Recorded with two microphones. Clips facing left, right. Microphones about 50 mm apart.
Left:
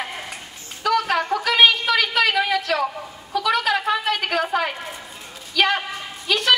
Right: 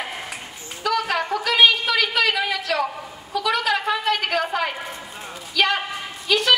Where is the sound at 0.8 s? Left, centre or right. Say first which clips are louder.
Left 2 dB; centre.